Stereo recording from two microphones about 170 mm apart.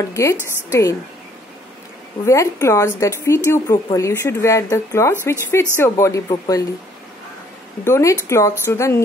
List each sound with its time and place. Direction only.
0.1 s speech: 15° left (ahead or behind)
2.2 s speech: 15° left (ahead or behind)
7.8 s speech: 15° left (ahead or behind)